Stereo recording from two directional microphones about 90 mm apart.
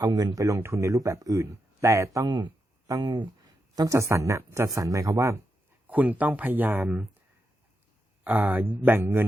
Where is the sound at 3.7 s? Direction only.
35° right (ahead or behind).